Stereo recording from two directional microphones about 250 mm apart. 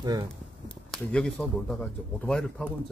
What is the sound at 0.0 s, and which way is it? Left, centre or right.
Speech, centre.